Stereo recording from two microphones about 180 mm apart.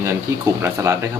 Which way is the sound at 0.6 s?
15° right (ahead or behind).